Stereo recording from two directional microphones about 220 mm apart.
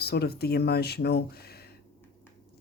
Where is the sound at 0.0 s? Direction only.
45° left (ahead or behind).